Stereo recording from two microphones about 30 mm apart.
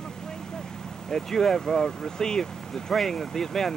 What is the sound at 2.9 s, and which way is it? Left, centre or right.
Speech, centre.